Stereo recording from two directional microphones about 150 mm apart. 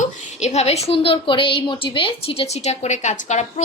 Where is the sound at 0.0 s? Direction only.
50° left (ahead or behind).